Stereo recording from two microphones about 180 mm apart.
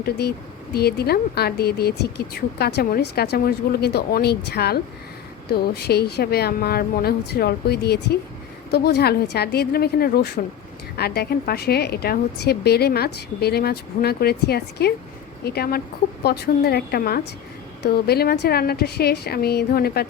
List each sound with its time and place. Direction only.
0.0 s speech: 60° left (ahead or behind)